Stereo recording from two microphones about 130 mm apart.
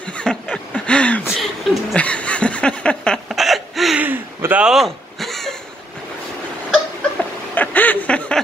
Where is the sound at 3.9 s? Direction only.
15° right (ahead or behind); by 5.5 s centre (ahead or behind).